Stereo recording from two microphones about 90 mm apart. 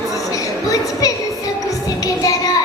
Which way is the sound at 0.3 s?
40° left (ahead or behind).